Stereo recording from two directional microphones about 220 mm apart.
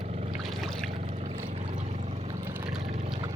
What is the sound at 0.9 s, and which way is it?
Boat, 25° right (ahead or behind).